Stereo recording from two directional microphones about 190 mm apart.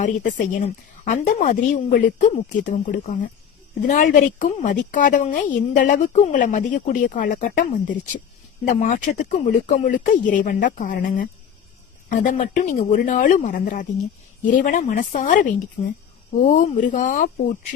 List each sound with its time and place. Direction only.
0.6 s a woman's voice: 40° left (ahead or behind)